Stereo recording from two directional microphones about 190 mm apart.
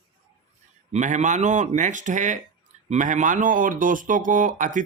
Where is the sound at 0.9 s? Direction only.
40° right (ahead or behind).